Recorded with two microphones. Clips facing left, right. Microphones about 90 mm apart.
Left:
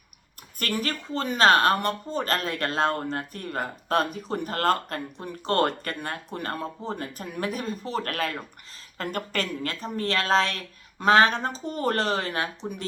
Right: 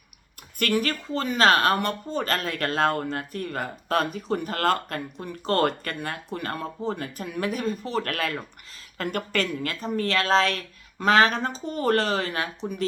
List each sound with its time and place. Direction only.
0.8 s speech: 35° left (ahead or behind)